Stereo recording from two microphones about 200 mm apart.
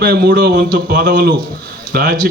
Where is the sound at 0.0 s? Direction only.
50° right (ahead or behind).